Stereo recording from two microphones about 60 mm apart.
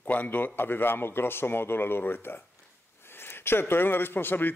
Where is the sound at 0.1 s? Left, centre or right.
Left.